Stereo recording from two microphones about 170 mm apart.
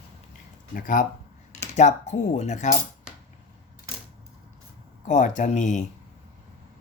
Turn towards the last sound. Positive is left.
turn(degrees=45)  # may be behind; listen again after turning